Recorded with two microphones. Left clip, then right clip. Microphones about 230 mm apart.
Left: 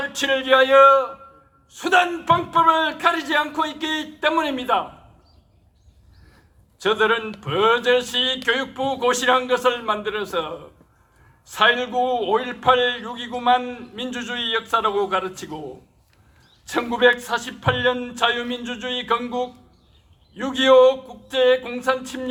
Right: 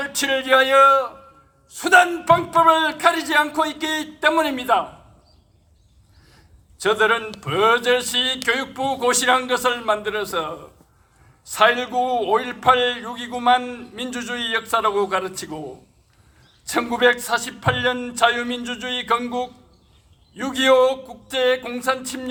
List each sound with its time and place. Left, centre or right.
0.0 s a man's voice: right
6.7 s a man's voice: right
16.6 s a man's voice: right